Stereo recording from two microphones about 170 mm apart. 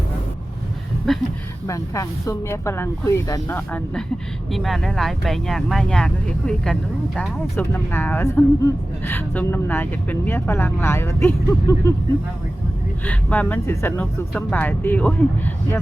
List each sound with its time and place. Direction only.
1.1 s speech: centre (ahead or behind)
1.6 s speech: 20° left (ahead or behind)
4.5 s speech: centre (ahead or behind)
7.2 s speech: 15° left (ahead or behind)
13.1 s speech: 10° left (ahead or behind)